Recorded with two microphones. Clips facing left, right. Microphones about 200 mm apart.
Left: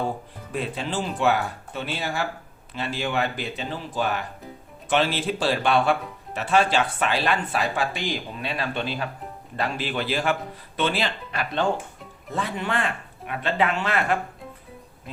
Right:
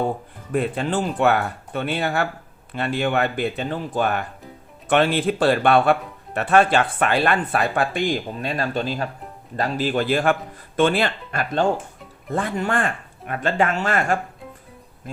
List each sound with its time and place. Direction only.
0.5 s speech: 55° right (ahead or behind)